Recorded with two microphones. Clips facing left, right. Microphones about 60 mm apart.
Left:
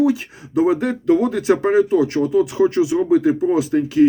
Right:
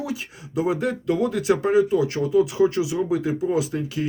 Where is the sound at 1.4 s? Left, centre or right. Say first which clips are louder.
Left 3 dB; left.